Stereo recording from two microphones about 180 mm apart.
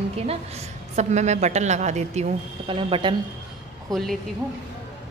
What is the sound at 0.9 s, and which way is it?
A woman's voice, 40° right (ahead or behind).